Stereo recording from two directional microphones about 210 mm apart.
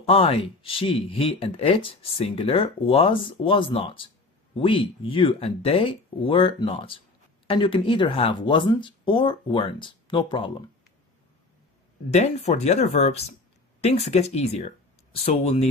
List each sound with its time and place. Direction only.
0.0 s speech: 25° left (ahead or behind)
12.1 s speech: 30° left (ahead or behind)